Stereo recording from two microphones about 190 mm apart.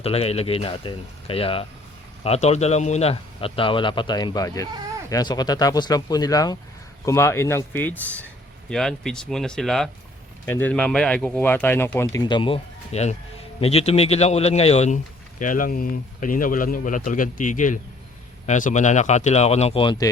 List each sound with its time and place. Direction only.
0.0 s a man's voice: 30° left (ahead or behind)